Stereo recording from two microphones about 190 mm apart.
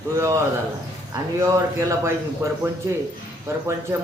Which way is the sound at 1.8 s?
15° right (ahead or behind).